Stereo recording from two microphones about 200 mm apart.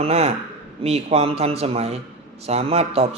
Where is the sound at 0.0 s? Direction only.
30° right (ahead or behind).